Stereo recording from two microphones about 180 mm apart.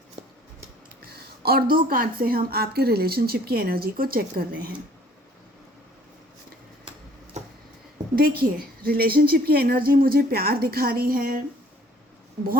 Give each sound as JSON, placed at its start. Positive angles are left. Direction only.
{"t": 1.1, "sound": "a woman's voice", "side_deg": -60}
{"t": 7.3, "sound": "a sound", "side_deg": -40}
{"t": 8.1, "sound": "a woman's voice", "side_deg": -60}